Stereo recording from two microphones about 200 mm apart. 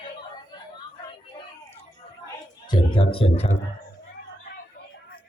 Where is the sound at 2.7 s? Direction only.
25° left (ahead or behind).